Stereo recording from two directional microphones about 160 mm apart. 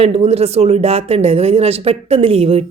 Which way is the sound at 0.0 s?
40° right (ahead or behind).